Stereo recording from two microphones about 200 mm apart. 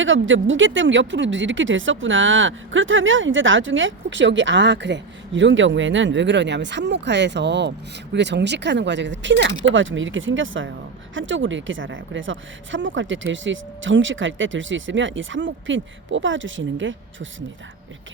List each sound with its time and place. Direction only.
0.0 s speech: 75° right (ahead or behind)